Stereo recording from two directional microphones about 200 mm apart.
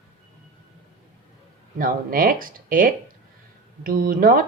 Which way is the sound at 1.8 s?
45° right (ahead or behind).